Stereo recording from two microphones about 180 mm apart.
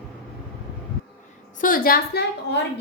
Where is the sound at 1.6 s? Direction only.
50° left (ahead or behind); by 2.6 s 65° left (ahead or behind).